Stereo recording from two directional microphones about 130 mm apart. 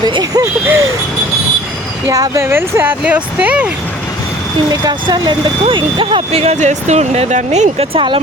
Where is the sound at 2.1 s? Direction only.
25° right (ahead or behind).